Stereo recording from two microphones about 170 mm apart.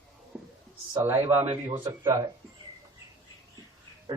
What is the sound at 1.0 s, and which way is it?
Speech, 15° right (ahead or behind).